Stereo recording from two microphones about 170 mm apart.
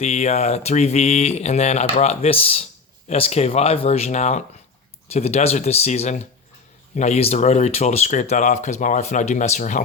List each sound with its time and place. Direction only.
0.0 s speech: 40° left (ahead or behind)